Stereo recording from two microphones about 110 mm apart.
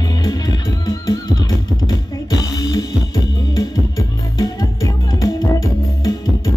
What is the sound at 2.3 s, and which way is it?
Music, 35° left (ahead or behind).